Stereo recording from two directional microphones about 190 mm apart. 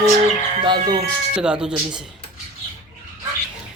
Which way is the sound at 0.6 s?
25° right (ahead or behind).